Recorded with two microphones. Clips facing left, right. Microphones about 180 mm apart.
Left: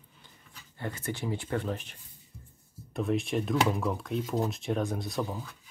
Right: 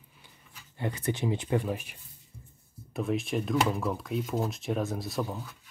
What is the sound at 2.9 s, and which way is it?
Speech, centre (ahead or behind).